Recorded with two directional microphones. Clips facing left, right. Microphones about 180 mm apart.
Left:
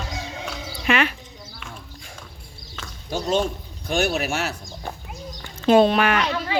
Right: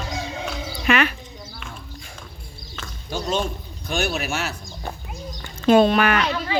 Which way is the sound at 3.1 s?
55° left (ahead or behind).